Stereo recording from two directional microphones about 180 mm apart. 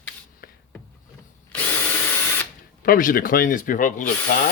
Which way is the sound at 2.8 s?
55° left (ahead or behind).